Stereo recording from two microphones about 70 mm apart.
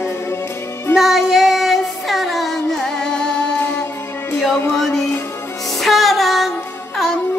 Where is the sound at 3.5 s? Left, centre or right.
Left.